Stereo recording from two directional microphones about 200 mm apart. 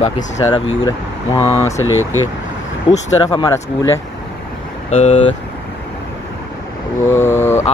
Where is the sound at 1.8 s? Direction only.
90° left.